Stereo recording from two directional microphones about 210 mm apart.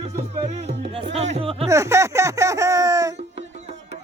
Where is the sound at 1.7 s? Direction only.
15° right (ahead or behind).